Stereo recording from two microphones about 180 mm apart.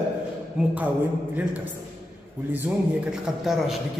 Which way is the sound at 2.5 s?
5° right (ahead or behind).